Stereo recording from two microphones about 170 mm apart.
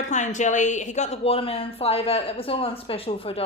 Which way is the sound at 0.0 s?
45° left (ahead or behind).